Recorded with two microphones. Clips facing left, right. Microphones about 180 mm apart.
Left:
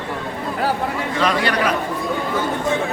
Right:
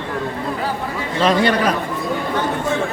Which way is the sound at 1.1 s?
25° right (ahead or behind).